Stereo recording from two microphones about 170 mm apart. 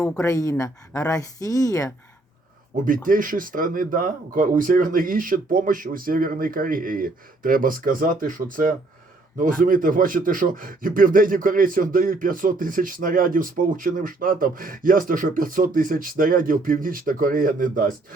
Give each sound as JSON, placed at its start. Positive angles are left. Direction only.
{"t": 0.2, "sound": "speech", "side_deg": 20}
{"t": 2.8, "sound": "a man's voice", "side_deg": -50}